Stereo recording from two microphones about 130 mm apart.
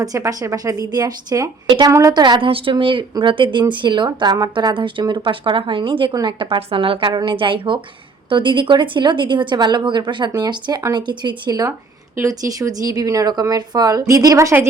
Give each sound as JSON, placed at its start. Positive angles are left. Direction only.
{"t": 0.0, "sound": "a woman's voice", "side_deg": -25}